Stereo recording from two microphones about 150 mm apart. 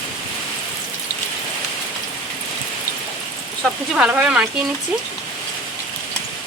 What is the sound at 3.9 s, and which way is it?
Speech, 5° right (ahead or behind).